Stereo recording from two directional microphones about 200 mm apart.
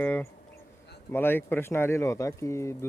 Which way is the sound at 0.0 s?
10° left (ahead or behind).